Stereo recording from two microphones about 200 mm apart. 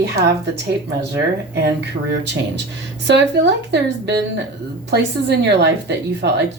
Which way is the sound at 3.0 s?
60° right (ahead or behind).